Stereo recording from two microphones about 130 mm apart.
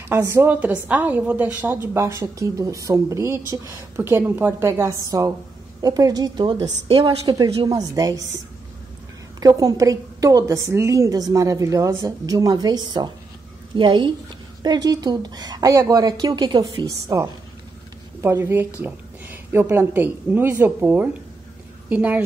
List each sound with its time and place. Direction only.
0.1 s a woman's voice: 20° right (ahead or behind); by 7.1 s 40° right (ahead or behind)
7.1 s a woman's voice: 30° right (ahead or behind)
9.4 s a woman's voice: 30° right (ahead or behind); by 22.2 s 10° right (ahead or behind)